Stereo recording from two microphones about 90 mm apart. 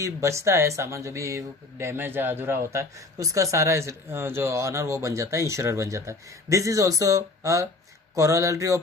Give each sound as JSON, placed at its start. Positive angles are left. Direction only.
{"t": 0.0, "sound": "speech", "side_deg": -35}